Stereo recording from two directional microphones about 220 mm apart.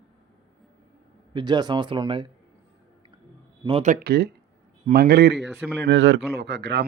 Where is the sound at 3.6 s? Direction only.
30° right (ahead or behind).